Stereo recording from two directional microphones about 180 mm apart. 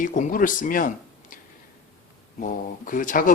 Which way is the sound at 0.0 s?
50° left (ahead or behind).